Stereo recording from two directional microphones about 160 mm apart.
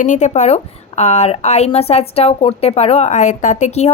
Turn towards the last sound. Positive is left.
turn(degrees=40)  # may be behind; listen again after turning